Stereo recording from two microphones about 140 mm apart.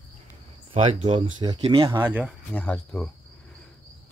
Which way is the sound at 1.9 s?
10° right (ahead or behind).